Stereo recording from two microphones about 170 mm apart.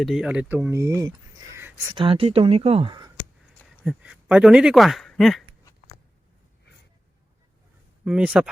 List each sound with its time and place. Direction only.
0.0 s speech: centre (ahead or behind)
1.0 s a sound: 20° right (ahead or behind)
1.9 s speech: 30° right (ahead or behind)
3.8 s speech: 5° right (ahead or behind)
8.0 s speech: 5° right (ahead or behind)